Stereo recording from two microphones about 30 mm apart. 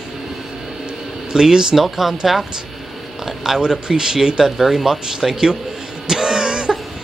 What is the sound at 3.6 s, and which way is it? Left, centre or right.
Speech, right.